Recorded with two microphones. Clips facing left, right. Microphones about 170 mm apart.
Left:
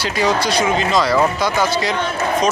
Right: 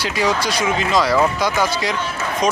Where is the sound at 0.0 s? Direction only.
10° right (ahead or behind).